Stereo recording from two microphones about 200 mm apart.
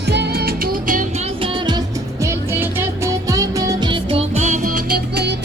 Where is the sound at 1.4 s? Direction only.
20° right (ahead or behind); by 5.3 s 50° right (ahead or behind).